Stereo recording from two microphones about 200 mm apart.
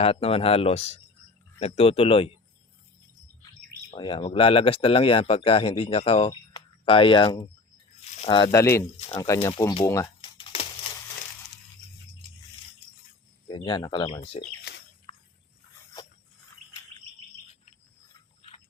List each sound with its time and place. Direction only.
0.0 s speech: 30° left (ahead or behind)
3.9 s speech: 25° left (ahead or behind)
8.6 s speech: 10° left (ahead or behind)
10.2 s crumpling: 25° left (ahead or behind)
13.5 s speech: 25° left (ahead or behind)
18.4 s a sound: 30° left (ahead or behind)